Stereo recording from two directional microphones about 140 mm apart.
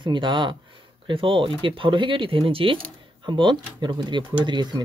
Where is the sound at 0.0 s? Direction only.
35° right (ahead or behind).